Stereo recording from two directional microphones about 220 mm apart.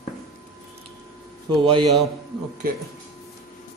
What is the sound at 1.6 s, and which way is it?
Speech, 20° right (ahead or behind).